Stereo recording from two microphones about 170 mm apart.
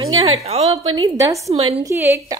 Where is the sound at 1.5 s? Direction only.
35° right (ahead or behind).